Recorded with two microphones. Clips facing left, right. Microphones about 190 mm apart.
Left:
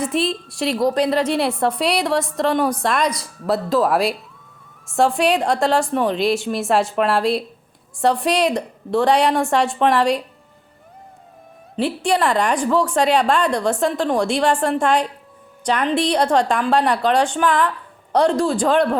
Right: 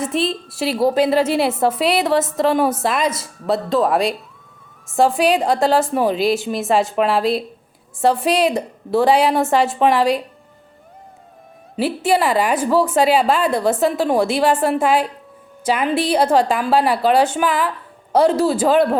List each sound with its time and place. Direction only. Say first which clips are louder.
0.0 s a woman's voice: even; centre (ahead or behind)
11.8 s a woman's voice: right 2 dB; 5° right (ahead or behind)